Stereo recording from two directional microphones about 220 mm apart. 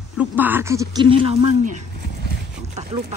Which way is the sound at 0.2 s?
10° right (ahead or behind).